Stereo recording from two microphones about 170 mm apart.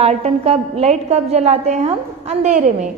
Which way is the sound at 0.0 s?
35° right (ahead or behind).